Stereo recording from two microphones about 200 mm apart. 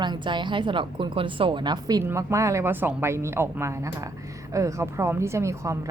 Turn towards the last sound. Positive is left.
turn(degrees=-15)  # may be behind; listen again after turning